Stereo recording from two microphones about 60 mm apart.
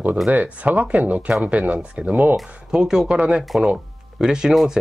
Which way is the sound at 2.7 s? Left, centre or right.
Centre.